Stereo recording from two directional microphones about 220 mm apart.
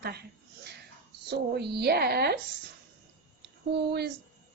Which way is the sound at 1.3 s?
50° right (ahead or behind).